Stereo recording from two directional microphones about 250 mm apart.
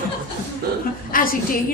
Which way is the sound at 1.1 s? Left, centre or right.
Left.